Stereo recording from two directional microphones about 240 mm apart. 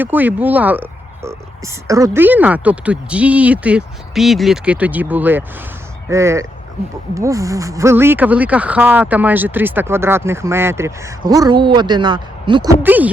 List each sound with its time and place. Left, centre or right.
0.0 s speech: centre
12.8 s speech: centre